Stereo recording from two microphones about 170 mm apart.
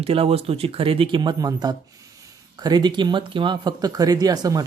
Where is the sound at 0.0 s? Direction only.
35° right (ahead or behind).